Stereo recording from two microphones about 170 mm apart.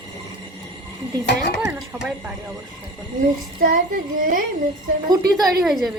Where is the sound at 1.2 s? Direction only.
80° left.